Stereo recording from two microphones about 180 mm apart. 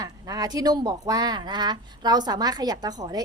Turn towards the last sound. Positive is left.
turn(degrees=-20)  # may be behind; listen again after turning